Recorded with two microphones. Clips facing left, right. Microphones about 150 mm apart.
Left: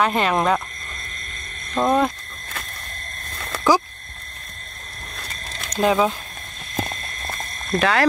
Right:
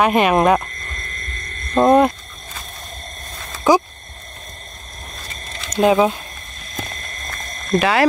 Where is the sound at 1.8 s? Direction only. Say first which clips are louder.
Right 6 dB; 20° right (ahead or behind).